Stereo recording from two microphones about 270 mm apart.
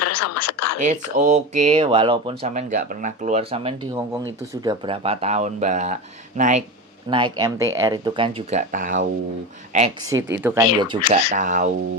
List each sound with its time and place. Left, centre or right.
0.0 s a sound: left
0.8 s speech: right
7.3 s speech: centre
10.2 s speech: right
10.4 s speech: centre
11.3 s speech: right